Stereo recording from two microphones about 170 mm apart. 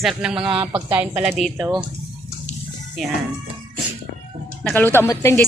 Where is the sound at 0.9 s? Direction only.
10° right (ahead or behind).